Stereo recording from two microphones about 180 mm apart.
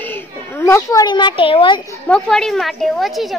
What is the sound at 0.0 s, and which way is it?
A child's voice, 10° left (ahead or behind).